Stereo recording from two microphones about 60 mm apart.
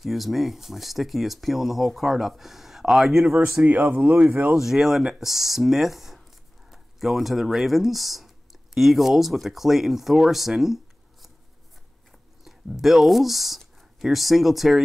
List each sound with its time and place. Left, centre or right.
0.0 s speech: centre
3.6 s speech: right
4.5 s speech: centre
12.4 s speech: centre